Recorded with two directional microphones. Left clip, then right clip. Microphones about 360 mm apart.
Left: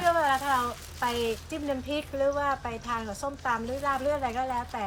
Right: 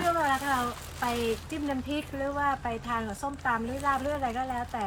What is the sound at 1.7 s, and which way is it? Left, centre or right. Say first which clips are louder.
Speech: left 4 dB; centre.